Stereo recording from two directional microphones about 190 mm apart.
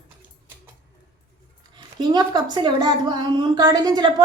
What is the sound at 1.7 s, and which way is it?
A woman's voice, 20° right (ahead or behind).